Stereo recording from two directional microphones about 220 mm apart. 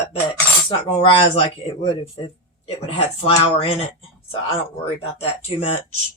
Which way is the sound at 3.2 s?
25° left (ahead or behind).